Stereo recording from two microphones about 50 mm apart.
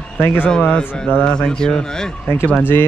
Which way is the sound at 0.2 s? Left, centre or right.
Left.